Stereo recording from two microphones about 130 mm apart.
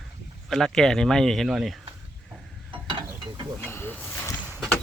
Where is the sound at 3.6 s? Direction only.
20° left (ahead or behind).